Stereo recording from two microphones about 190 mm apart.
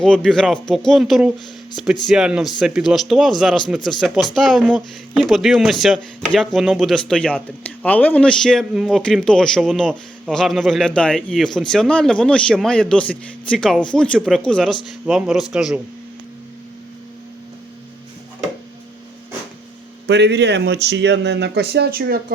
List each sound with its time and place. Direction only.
0.0 s speech: 5° left (ahead or behind)
20.1 s speech: 60° right (ahead or behind)